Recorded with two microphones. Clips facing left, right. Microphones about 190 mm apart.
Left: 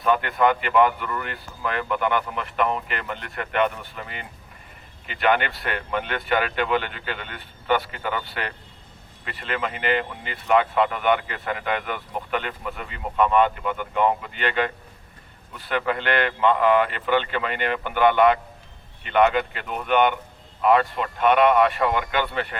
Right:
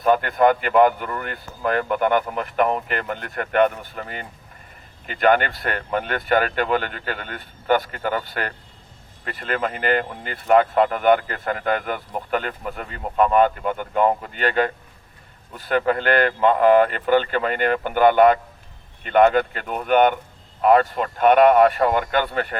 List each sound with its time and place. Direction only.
0.0 s speech: 40° right (ahead or behind)